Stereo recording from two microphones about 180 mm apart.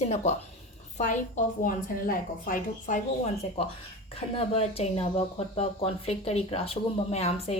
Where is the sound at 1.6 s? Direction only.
50° left (ahead or behind).